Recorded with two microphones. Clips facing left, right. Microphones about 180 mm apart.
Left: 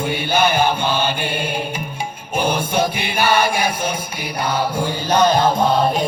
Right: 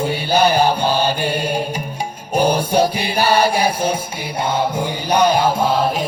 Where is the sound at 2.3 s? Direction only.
40° right (ahead or behind).